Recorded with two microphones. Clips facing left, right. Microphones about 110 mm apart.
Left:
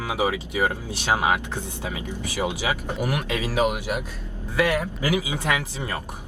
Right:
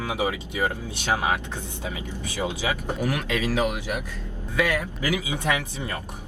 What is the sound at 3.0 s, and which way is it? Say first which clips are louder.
Speech: even; 20° left (ahead or behind).